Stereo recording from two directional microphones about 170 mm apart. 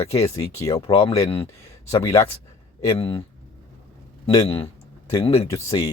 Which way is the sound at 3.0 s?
30° left (ahead or behind).